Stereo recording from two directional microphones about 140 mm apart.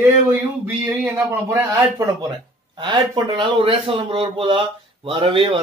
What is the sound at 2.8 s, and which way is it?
A man's voice, 35° right (ahead or behind).